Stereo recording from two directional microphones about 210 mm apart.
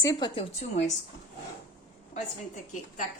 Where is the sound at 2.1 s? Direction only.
35° left (ahead or behind).